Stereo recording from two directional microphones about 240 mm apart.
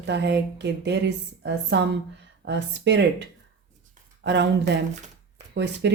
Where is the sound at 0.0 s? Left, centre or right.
Right.